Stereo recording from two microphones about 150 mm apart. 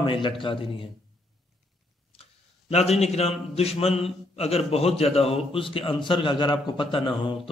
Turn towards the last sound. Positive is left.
turn(degrees=35)  # may be behind; listen again after turning